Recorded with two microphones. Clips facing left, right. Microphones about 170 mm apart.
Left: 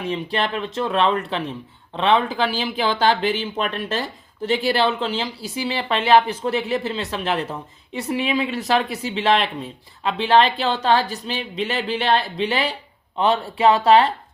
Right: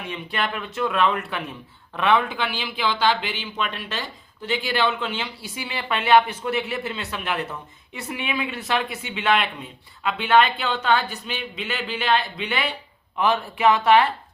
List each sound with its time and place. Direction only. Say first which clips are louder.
0.1 s speech: left 4 dB; 30° left (ahead or behind)